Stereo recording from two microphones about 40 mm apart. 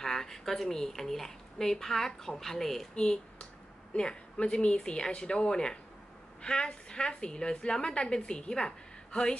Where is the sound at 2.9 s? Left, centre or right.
Left.